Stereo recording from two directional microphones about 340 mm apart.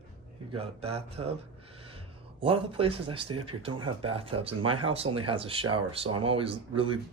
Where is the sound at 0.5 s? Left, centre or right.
Centre.